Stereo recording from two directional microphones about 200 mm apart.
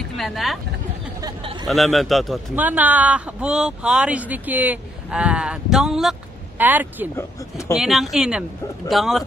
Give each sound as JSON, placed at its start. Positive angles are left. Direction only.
{"t": 0.2, "sound": "a man's voice", "side_deg": 0}
{"t": 1.2, "sound": "speech", "side_deg": -25}
{"t": 1.7, "sound": "a man's voice", "side_deg": 0}
{"t": 7.2, "sound": "speech", "side_deg": 15}
{"t": 7.7, "sound": "a man's voice", "side_deg": 0}